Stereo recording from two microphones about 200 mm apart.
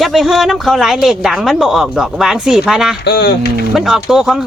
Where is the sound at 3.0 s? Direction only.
55° left (ahead or behind).